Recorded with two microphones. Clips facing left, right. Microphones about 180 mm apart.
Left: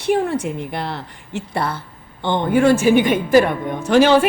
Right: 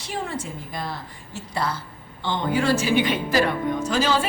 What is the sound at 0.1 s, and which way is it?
Speech, 60° left (ahead or behind).